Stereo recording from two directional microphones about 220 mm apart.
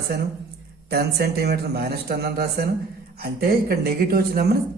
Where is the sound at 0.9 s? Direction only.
45° right (ahead or behind).